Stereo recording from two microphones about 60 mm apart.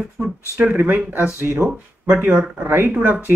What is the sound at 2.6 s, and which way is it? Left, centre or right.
Speech, right.